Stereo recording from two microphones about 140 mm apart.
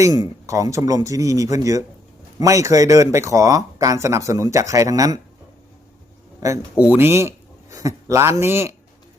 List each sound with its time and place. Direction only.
0.0 s speech: 25° right (ahead or behind)
6.7 s speech: 10° right (ahead or behind)